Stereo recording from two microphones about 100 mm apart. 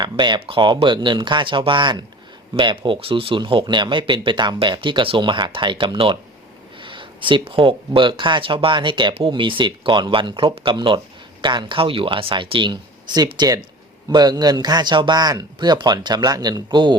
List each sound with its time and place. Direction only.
0.0 s speech: 50° right (ahead or behind)